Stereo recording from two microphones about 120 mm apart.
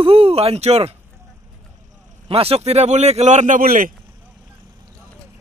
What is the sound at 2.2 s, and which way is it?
A man's voice, 55° right (ahead or behind).